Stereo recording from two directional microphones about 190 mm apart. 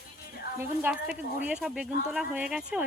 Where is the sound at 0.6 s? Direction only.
10° right (ahead or behind).